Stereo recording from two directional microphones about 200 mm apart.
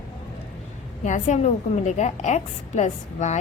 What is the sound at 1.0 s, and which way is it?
A woman's voice, 40° left (ahead or behind).